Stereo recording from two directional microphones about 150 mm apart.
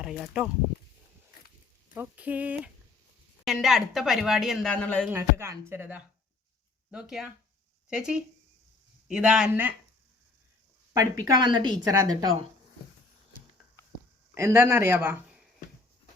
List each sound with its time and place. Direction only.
0.0 s speech: 5° right (ahead or behind)
2.0 s speech: 10° right (ahead or behind); by 5.0 s 10° left (ahead or behind)
5.1 s speech: 15° right (ahead or behind)
6.9 s speech: 5° right (ahead or behind)
10.9 s a woman's voice: 25° right (ahead or behind)
14.3 s speech: 20° right (ahead or behind)